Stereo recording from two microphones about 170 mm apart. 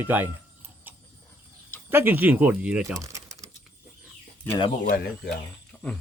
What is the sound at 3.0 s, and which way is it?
Typing, 20° right (ahead or behind).